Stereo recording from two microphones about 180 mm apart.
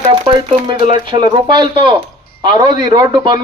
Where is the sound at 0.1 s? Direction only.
30° right (ahead or behind).